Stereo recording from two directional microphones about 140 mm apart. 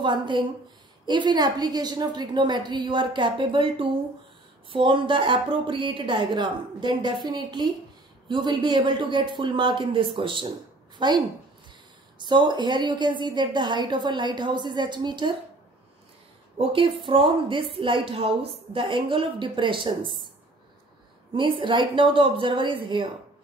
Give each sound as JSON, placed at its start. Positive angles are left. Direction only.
{"t": 0.0, "sound": "a woman's voice", "side_deg": -35}
{"t": 12.2, "sound": "a woman's voice", "side_deg": -35}
{"t": 16.5, "sound": "a woman's voice", "side_deg": -40}
{"t": 21.3, "sound": "a woman's voice", "side_deg": -35}